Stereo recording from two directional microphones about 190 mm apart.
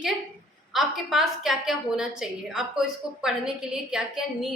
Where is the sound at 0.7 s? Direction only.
Centre (ahead or behind).